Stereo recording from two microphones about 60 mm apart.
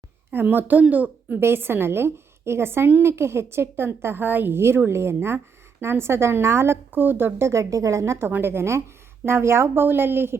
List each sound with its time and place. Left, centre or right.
0.3 s speech: right
1.4 s a woman's voice: right
8.3 s a woman's voice: right